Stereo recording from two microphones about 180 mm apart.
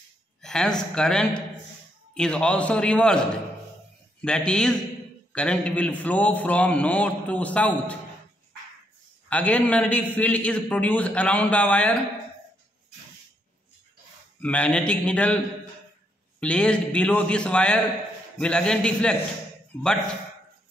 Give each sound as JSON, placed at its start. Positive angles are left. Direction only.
{"t": 0.4, "sound": "a man's voice", "side_deg": 5}
{"t": 4.2, "sound": "a man's voice", "side_deg": 5}
{"t": 9.3, "sound": "a man's voice", "side_deg": 5}
{"t": 14.4, "sound": "a man's voice", "side_deg": 5}
{"t": 16.3, "sound": "a man's voice", "side_deg": 5}